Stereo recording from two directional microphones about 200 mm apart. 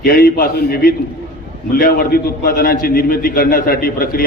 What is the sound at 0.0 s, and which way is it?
A man's voice, 45° left (ahead or behind).